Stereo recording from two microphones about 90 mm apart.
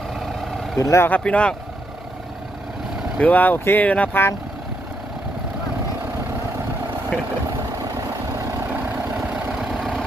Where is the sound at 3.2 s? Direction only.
15° left (ahead or behind).